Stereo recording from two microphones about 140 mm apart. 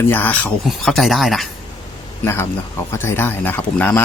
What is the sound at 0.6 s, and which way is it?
Speech, centre (ahead or behind).